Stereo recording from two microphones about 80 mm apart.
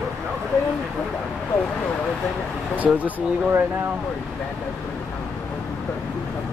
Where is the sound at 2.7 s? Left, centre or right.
Centre.